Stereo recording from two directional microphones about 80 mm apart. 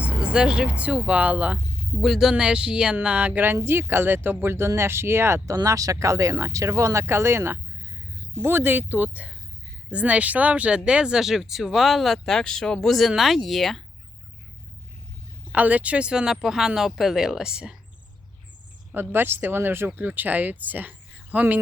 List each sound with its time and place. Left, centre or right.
0.0 s speech: centre
2.0 s speech: centre
2.3 s speech: centre; by 5.4 s right
5.5 s speech: right; by 13.8 s centre
15.5 s speech: centre
18.9 s speech: right